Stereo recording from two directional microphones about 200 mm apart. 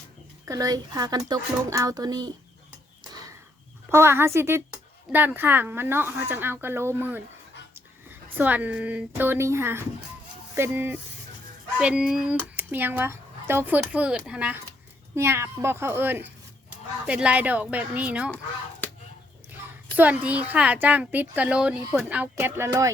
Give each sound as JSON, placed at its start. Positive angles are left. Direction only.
{"t": 0.4, "sound": "speech", "side_deg": -20}
{"t": 3.9, "sound": "speech", "side_deg": -10}
{"t": 20.0, "sound": "speech", "side_deg": -5}